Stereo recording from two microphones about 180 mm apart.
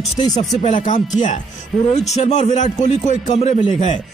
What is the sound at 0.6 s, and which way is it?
A man's voice, 45° left (ahead or behind).